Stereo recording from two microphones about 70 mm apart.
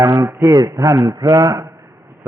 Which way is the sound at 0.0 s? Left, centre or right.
Right.